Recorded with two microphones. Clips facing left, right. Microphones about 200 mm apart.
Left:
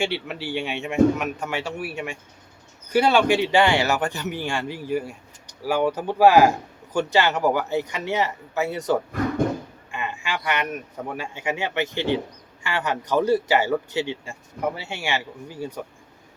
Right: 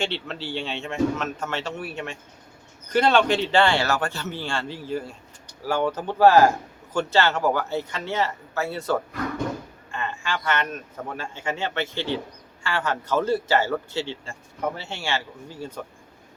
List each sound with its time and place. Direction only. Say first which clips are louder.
0.0 s a man's voice: left 2 dB; 10° left (ahead or behind)